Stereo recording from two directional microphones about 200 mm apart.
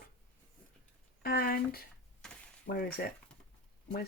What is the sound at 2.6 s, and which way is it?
Speech, 50° left (ahead or behind).